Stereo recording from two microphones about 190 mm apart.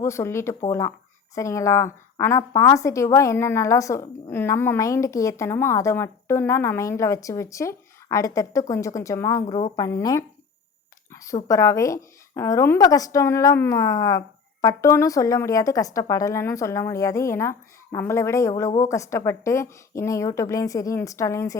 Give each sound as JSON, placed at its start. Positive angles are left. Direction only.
{"t": 0.0, "sound": "a woman's voice", "side_deg": 15}